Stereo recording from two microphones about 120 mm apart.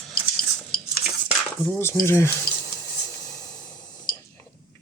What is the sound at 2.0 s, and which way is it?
Speech, 20° left (ahead or behind).